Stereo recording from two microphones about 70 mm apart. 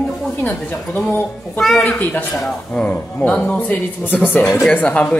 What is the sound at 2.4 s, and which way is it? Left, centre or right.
A man's voice, centre.